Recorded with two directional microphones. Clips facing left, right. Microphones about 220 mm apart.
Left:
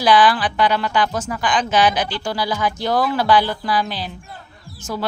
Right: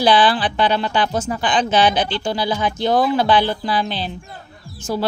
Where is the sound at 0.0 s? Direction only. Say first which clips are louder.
Even; 30° right (ahead or behind).